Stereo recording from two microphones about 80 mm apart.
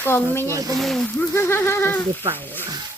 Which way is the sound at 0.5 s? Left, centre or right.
Right.